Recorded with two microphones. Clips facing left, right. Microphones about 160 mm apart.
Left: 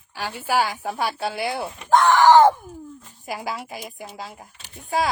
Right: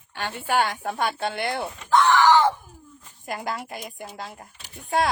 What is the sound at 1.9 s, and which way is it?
Groan, 45° left (ahead or behind).